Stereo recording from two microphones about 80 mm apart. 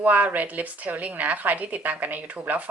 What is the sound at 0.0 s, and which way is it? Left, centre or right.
Speech, centre.